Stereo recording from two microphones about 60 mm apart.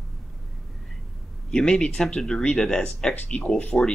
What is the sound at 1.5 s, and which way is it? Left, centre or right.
Speech, centre.